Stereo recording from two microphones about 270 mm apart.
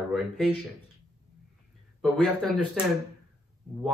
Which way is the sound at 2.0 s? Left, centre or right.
Centre.